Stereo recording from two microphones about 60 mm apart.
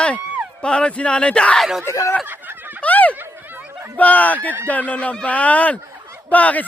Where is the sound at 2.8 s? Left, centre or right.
Left.